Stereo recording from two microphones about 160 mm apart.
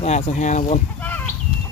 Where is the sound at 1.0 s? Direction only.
10° left (ahead or behind).